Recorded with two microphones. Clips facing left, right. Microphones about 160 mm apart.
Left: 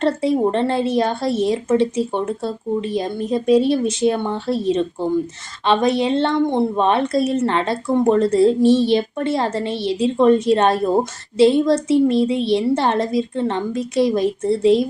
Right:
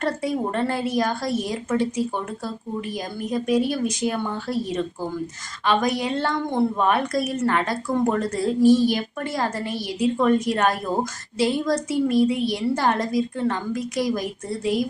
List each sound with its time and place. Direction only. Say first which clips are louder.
0.0 s a woman's voice: left 7 dB; 25° left (ahead or behind)